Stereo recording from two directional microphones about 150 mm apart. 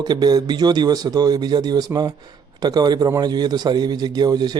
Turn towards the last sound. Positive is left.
turn(degrees=-25)  # may be behind; listen again after turning